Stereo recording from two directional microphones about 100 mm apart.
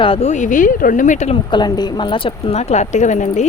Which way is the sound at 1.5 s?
45° left (ahead or behind).